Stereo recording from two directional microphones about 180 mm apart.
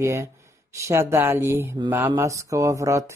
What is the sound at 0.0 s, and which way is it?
Speech, 15° right (ahead or behind).